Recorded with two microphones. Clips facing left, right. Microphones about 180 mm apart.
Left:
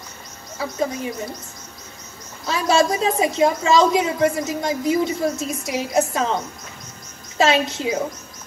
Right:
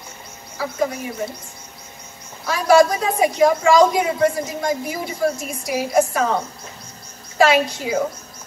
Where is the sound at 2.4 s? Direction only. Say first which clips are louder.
Right 4 dB; 25° left (ahead or behind).